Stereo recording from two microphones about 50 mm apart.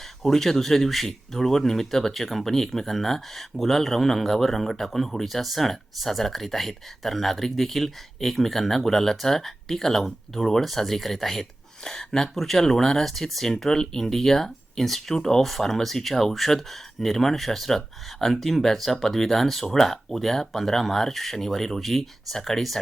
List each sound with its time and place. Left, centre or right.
0.2 s speech: centre